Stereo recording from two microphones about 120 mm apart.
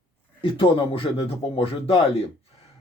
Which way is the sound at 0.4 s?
45° left (ahead or behind).